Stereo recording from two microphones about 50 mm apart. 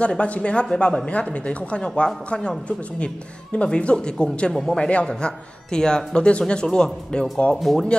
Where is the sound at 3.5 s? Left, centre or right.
Left.